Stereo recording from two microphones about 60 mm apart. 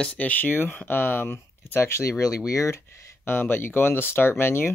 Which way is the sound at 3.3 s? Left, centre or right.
Left.